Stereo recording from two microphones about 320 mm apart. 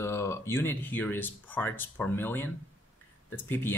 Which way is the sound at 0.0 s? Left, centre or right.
Centre.